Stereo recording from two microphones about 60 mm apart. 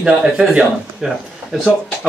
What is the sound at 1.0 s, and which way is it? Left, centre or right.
Speech, centre.